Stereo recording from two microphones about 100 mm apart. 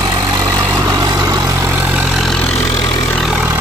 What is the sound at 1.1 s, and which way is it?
Vehicle, 45° right (ahead or behind).